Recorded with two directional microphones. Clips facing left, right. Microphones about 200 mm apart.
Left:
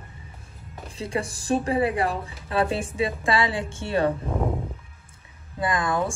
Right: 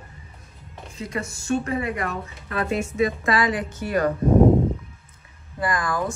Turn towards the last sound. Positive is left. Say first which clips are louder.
# even
turn(degrees=25)  # may be behind; listen again after turning